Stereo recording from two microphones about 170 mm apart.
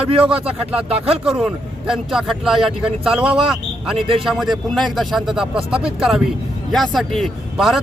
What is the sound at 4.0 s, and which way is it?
Speech, 30° right (ahead or behind).